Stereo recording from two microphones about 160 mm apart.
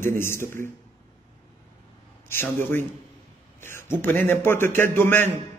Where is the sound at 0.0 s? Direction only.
15° left (ahead or behind).